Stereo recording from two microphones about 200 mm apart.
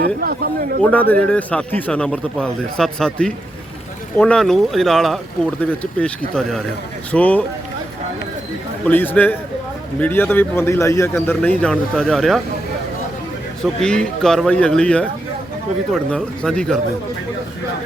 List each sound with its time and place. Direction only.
0.0 s a man's voice: 50° right (ahead or behind)
1.1 s a man's voice: 5° left (ahead or behind)
8.9 s a man's voice: 10° left (ahead or behind)
13.8 s a man's voice: 5° left (ahead or behind)